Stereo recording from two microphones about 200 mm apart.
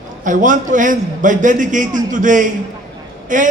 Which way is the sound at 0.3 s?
40° right (ahead or behind).